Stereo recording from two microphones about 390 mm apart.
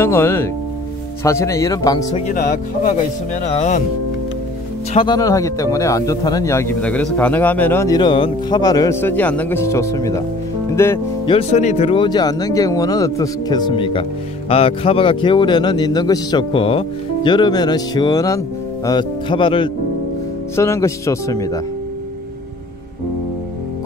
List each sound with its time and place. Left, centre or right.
0.0 s a man's voice: centre
4.9 s a man's voice: centre